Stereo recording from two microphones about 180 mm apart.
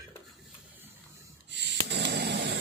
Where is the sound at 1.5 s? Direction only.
75° right (ahead or behind).